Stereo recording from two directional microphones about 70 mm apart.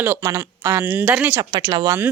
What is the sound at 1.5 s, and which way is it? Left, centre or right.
Speech, right.